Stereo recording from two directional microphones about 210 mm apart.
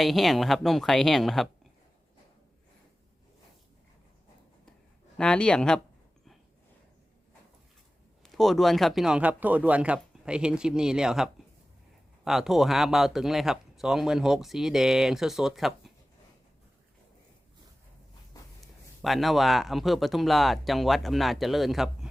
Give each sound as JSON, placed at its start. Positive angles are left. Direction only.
{"t": 0.0, "sound": "speech", "side_deg": 0}
{"t": 5.1, "sound": "speech", "side_deg": 5}
{"t": 8.2, "sound": "speech", "side_deg": 0}
{"t": 18.6, "sound": "speech", "side_deg": 0}